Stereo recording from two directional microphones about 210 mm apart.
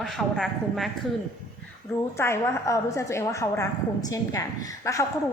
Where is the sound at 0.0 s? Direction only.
Centre (ahead or behind).